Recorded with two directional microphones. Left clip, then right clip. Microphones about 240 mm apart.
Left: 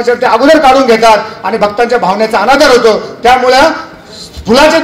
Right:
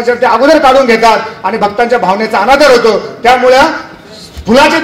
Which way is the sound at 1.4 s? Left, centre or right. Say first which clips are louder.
Left 1 dB; left.